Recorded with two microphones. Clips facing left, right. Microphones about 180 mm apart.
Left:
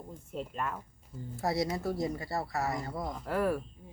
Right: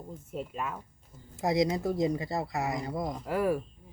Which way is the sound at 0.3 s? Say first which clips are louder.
Even; 5° right (ahead or behind).